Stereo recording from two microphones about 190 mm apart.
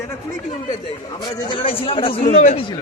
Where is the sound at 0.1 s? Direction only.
10° left (ahead or behind).